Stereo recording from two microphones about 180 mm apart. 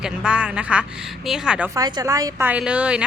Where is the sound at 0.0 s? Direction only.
5° right (ahead or behind).